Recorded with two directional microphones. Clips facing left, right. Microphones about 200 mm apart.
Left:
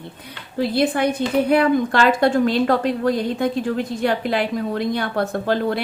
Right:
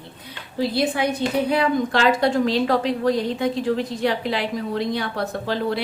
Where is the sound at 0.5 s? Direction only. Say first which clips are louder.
Left 3 dB; 55° left (ahead or behind).